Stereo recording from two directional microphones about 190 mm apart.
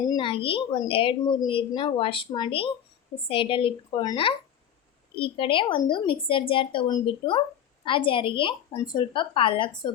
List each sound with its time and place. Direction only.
0.0 s a woman's voice: 25° left (ahead or behind)